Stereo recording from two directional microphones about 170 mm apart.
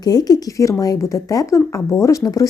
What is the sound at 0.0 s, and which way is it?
Speech, 25° left (ahead or behind).